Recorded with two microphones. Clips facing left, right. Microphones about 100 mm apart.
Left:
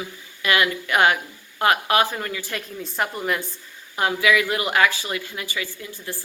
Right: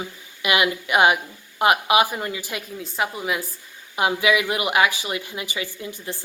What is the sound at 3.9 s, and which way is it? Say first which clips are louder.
Speech: even; 20° right (ahead or behind).